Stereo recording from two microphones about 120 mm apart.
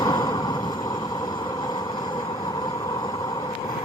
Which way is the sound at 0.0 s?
35° left (ahead or behind).